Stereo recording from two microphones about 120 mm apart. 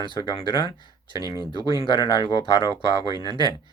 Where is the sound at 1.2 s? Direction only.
30° right (ahead or behind).